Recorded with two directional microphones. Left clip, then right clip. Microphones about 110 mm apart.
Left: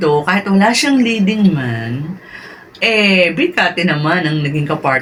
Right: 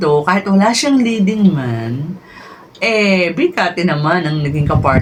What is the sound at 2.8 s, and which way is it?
Speech, 20° right (ahead or behind).